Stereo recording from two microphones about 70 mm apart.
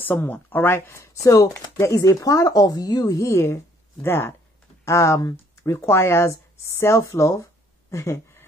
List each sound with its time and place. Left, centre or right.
0.0 s speech: left
1.2 s a woman's voice: left
7.9 s a sound: left